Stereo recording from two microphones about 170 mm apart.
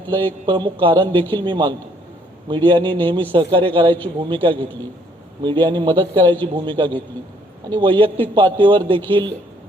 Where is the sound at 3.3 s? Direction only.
30° right (ahead or behind).